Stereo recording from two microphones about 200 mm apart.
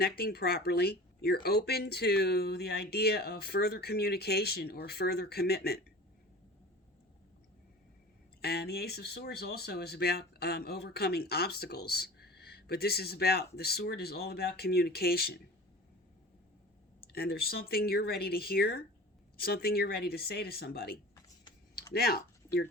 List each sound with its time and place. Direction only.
0.0 s speech: 50° left (ahead or behind)
8.4 s speech: 50° left (ahead or behind)
17.1 s speech: 50° left (ahead or behind)